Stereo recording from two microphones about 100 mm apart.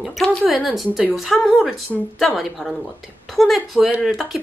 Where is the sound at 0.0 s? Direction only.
10° left (ahead or behind).